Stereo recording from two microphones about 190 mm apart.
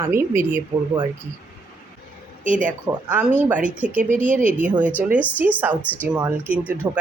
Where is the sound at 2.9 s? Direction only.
5° right (ahead or behind).